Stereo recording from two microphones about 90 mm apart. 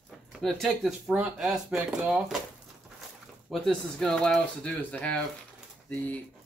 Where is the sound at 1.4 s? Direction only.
10° right (ahead or behind).